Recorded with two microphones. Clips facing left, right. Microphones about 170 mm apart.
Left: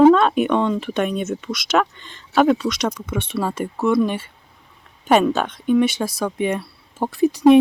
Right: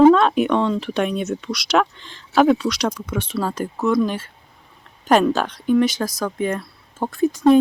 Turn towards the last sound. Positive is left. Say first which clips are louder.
# left 2 dB
turn(degrees=5)  # may be behind; listen again after turning